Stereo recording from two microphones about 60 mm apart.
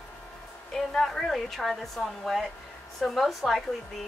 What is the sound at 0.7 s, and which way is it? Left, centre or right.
A woman's voice, centre.